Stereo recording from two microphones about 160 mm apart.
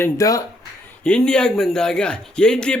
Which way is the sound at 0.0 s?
20° left (ahead or behind).